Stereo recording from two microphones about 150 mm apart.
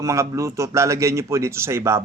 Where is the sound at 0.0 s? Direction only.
20° right (ahead or behind).